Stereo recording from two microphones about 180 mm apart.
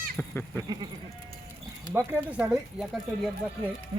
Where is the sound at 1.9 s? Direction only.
15° right (ahead or behind).